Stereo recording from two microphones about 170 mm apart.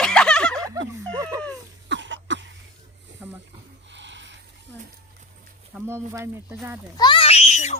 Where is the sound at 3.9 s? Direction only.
90° right.